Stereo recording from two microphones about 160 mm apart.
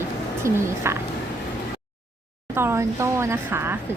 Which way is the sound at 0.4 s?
20° right (ahead or behind).